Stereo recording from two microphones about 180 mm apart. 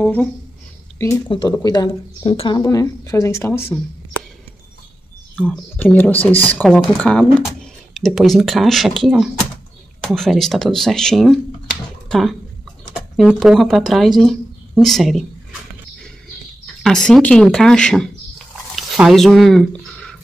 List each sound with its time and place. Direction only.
0.0 s speech: 10° left (ahead or behind)
1.5 s speech: 20° left (ahead or behind)
2.6 s speech: 15° left (ahead or behind)
5.5 s speech: 10° left (ahead or behind)
16.8 s speech: centre (ahead or behind)
18.8 s a sound: centre (ahead or behind)